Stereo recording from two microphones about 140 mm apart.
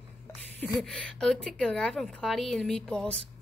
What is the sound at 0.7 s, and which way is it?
A woman's voice, 5° left (ahead or behind).